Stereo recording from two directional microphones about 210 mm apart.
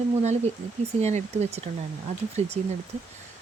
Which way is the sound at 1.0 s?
30° right (ahead or behind).